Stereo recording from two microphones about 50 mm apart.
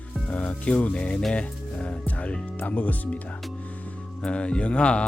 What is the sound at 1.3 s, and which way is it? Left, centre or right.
Speech, left.